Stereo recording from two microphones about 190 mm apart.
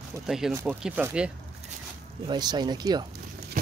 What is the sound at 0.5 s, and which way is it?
Speech, 5° right (ahead or behind).